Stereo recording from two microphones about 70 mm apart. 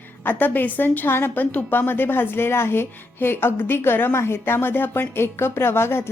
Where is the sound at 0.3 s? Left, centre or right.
Left.